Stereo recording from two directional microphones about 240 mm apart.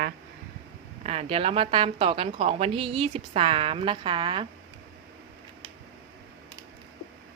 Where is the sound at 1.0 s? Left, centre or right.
Right.